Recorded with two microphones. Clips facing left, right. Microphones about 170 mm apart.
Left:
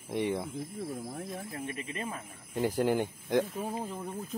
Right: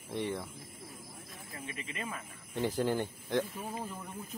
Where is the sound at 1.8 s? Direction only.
35° left (ahead or behind).